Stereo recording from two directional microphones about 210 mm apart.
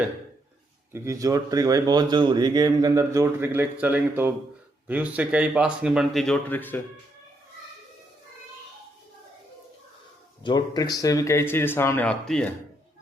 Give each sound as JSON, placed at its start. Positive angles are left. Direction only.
{"t": 0.9, "sound": "speech", "side_deg": -15}
{"t": 10.4, "sound": "speech", "side_deg": 20}